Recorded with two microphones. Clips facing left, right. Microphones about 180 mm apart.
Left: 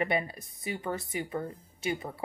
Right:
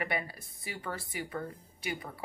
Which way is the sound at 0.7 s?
20° left (ahead or behind).